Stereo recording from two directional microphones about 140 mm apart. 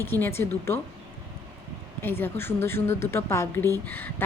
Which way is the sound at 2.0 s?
15° left (ahead or behind).